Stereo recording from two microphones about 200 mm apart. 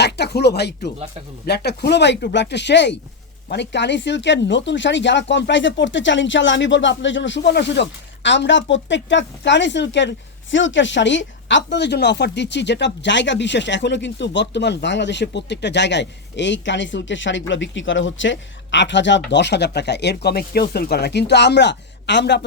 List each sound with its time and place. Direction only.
0.0 s speech: 55° left (ahead or behind)